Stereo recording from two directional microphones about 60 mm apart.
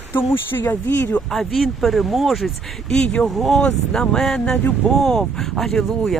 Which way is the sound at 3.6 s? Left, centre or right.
Centre.